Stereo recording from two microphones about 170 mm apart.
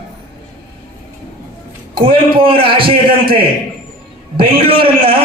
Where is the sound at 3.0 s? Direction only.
60° right (ahead or behind).